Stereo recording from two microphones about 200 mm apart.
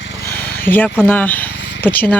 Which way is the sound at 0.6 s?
10° left (ahead or behind).